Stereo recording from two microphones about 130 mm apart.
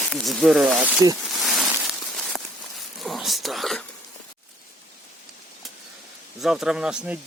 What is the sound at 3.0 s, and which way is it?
Whispering, centre (ahead or behind).